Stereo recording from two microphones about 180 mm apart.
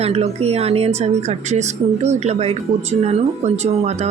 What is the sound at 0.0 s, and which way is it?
Speech, 35° right (ahead or behind).